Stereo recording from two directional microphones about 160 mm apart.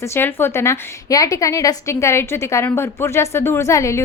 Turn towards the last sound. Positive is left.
turn(degrees=20)  # may be behind; listen again after turning